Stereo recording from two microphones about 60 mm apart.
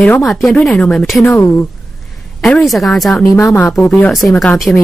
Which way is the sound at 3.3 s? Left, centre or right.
Left.